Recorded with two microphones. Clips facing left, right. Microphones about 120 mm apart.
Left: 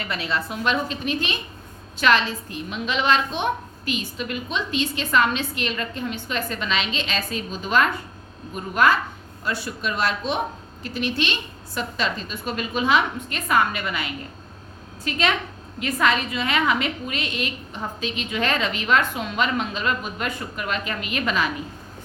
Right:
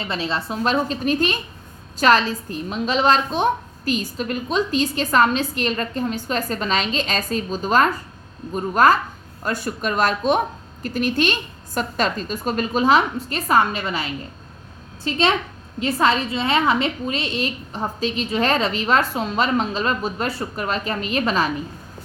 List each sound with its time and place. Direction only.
0.0 s a woman's voice: 30° right (ahead or behind)